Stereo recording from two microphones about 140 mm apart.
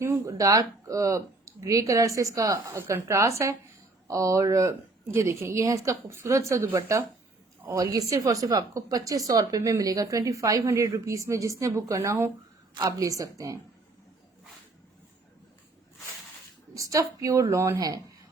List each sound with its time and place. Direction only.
0.0 s speech: 20° right (ahead or behind)
16.7 s speech: 25° right (ahead or behind)